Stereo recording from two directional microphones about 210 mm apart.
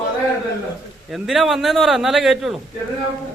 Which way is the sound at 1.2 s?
Centre (ahead or behind).